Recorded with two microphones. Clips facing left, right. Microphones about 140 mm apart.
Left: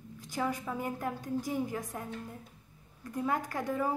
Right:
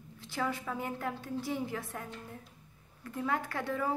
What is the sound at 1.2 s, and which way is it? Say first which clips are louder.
Speech: left 2 dB; 45° left (ahead or behind).